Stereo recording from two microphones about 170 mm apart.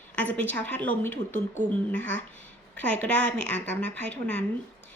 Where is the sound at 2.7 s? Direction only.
10° left (ahead or behind).